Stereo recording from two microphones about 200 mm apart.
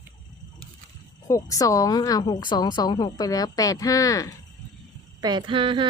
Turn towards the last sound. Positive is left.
turn(degrees=-25)  # may be behind; listen again after turning